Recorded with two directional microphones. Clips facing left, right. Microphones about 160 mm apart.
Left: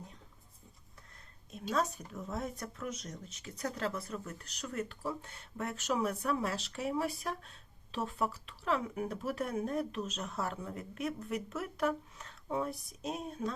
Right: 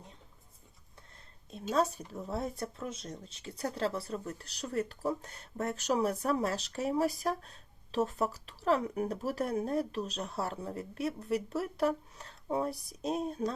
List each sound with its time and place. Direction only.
1.7 s speech: 30° right (ahead or behind)